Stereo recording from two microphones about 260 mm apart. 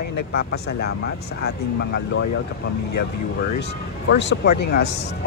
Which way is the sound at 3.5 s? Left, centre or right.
Left.